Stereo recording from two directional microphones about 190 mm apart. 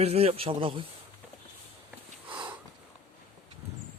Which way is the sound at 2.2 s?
25° right (ahead or behind).